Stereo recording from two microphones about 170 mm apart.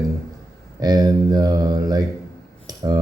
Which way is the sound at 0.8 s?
20° right (ahead or behind).